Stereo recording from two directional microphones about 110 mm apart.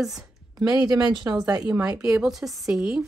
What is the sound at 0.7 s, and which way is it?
Speech, 40° right (ahead or behind).